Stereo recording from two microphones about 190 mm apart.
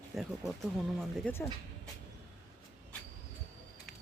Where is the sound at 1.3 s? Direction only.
10° left (ahead or behind).